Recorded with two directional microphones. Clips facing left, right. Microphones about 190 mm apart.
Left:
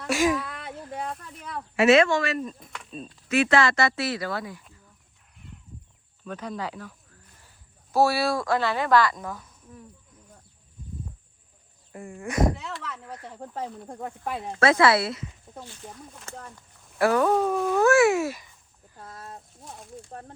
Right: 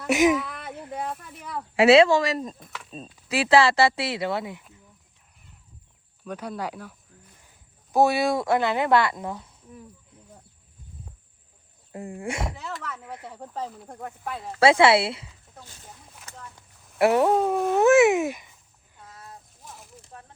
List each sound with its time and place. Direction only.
0.1 s a woman's voice: 20° right (ahead or behind)
0.3 s whimper: centre (ahead or behind)
0.9 s a sound: 5° right (ahead or behind)
1.8 s a woman's voice: 35° right (ahead or behind)
6.2 s a woman's voice: 10° right (ahead or behind)
12.1 s speech: 30° right (ahead or behind)
12.5 s speech: centre (ahead or behind)
14.3 s speech: 20° left (ahead or behind)
14.6 s a woman's voice: 25° right (ahead or behind)
17.0 s a woman's voice: 25° right (ahead or behind)